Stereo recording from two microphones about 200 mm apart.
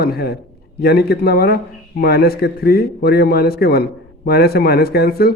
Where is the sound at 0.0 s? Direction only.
50° left (ahead or behind).